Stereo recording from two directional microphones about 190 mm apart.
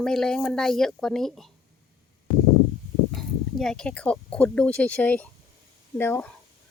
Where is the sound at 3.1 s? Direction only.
Centre (ahead or behind).